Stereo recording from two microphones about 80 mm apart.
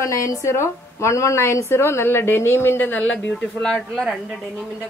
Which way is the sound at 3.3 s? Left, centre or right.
Centre.